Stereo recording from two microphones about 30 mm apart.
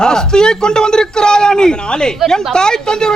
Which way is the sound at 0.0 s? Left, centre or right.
Left.